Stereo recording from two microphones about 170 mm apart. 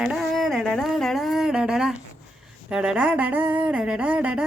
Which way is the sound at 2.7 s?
5° right (ahead or behind).